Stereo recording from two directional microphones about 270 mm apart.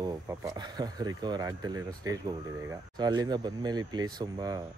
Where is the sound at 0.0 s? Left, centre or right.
Centre.